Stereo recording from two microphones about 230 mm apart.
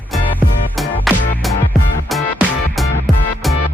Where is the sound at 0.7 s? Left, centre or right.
Centre.